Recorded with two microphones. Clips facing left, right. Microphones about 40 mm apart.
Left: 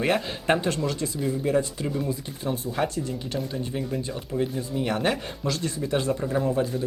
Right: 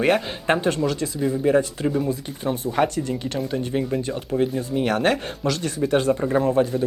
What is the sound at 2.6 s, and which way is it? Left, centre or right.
Speech, right.